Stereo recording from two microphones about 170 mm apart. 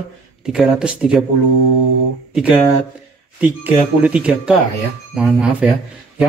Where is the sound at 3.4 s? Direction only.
10° right (ahead or behind).